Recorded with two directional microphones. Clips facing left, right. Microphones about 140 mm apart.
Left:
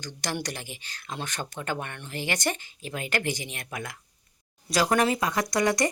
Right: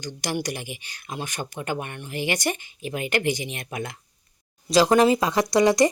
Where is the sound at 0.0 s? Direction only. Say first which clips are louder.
Right 4 dB; 15° right (ahead or behind).